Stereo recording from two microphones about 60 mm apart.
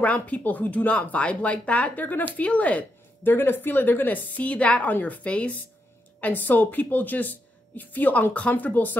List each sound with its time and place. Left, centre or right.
0.0 s speech: left
3.3 s a woman's voice: left